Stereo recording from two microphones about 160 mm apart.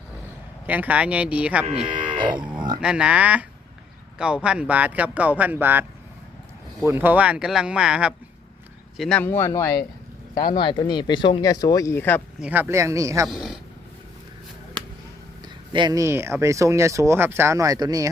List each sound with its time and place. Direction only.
0.7 s speech: 10° right (ahead or behind)
1.9 s livestock: 30° right (ahead or behind)
2.8 s speech: 5° right (ahead or behind)
4.4 s speech: 5° right (ahead or behind)
6.8 s speech: 10° right (ahead or behind)
9.0 s speech: 5° left (ahead or behind)
12.4 s speech: 10° right (ahead or behind)
13.2 s speech: centre (ahead or behind)
15.7 s speech: 25° right (ahead or behind)